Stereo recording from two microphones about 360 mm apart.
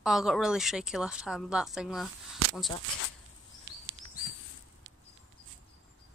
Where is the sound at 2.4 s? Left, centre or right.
Right.